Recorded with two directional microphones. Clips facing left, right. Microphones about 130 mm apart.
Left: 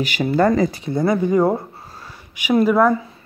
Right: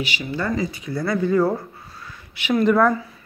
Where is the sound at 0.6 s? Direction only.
35° left (ahead or behind).